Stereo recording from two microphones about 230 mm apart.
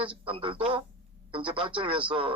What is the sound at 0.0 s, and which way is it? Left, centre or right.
A man's voice, right.